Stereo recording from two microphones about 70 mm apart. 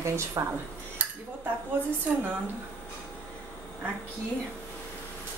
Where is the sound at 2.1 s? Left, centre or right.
Right.